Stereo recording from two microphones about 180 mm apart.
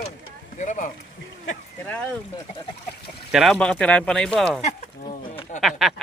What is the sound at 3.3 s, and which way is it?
Speech, centre (ahead or behind).